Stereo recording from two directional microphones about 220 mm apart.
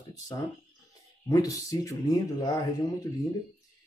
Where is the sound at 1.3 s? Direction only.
15° left (ahead or behind).